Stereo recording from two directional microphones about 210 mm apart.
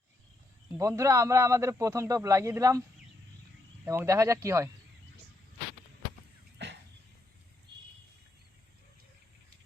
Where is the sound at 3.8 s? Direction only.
15° right (ahead or behind).